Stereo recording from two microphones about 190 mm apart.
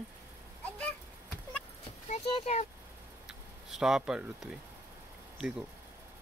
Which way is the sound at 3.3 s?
Centre (ahead or behind).